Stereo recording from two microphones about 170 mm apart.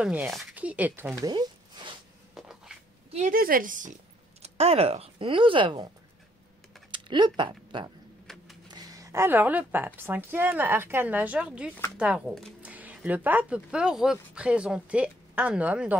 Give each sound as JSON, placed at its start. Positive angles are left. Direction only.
{"t": 0.0, "sound": "speech", "side_deg": -5}
{"t": 2.3, "sound": "a sound", "side_deg": -5}
{"t": 3.1, "sound": "speech", "side_deg": -50}
{"t": 6.9, "sound": "speech", "side_deg": -25}
{"t": 8.3, "sound": "a sound", "side_deg": 0}
{"t": 8.6, "sound": "speech", "side_deg": -25}